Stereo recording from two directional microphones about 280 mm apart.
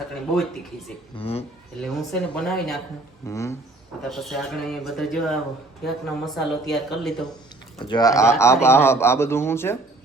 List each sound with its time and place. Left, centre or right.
1.1 s speech: left
1.8 s speech: centre
7.9 s speech: centre